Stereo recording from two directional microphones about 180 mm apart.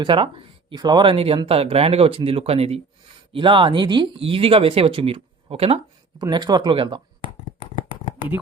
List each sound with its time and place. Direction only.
0.0 s speech: 30° right (ahead or behind)
6.2 s speech: 25° right (ahead or behind)